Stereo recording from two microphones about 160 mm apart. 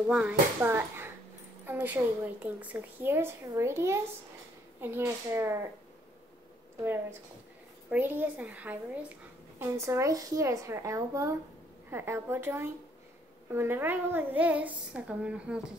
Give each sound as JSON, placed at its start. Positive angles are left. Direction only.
{"t": 0.1, "sound": "a woman's voice", "side_deg": -10}
{"t": 6.8, "sound": "a woman's voice", "side_deg": -15}